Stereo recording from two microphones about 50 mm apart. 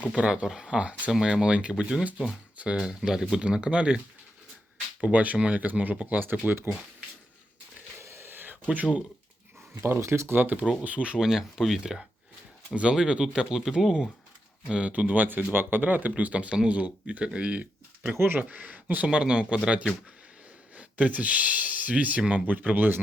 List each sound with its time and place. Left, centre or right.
0.2 s speech: right
1.1 s speech: centre; by 6.1 s right
6.4 s speech: right
7.9 s a sound: right
8.7 s speech: right
9.8 s speech: right
10.8 s speech: right
11.2 s speech: centre
14.7 s speech: right
18.1 s speech: right
18.3 s speech: right
19.1 s speech: centre
20.7 s speech: right